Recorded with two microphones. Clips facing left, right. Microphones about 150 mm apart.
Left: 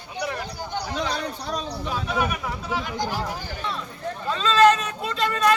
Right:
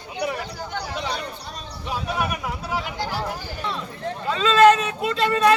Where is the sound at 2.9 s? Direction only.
15° left (ahead or behind).